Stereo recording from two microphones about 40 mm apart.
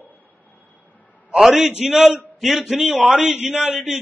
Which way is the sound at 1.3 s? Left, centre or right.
Centre.